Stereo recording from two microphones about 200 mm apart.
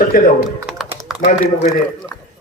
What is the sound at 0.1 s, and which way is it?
Speech, 45° left (ahead or behind).